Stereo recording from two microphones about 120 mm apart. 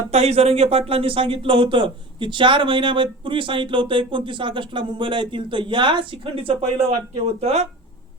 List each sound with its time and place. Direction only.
0.1 s a man's voice: 60° right (ahead or behind)